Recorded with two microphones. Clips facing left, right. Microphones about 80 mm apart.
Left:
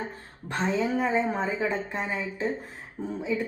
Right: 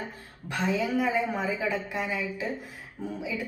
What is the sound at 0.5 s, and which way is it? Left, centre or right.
A woman's voice, left.